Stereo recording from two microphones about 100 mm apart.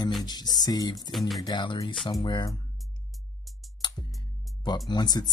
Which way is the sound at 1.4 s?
50° left (ahead or behind).